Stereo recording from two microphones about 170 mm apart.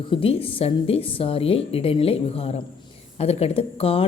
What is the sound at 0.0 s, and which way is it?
Speech, 30° left (ahead or behind).